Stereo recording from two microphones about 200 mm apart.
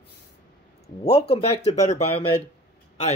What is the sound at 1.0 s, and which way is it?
Speech, 30° left (ahead or behind).